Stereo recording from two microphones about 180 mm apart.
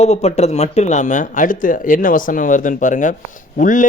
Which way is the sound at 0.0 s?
35° left (ahead or behind).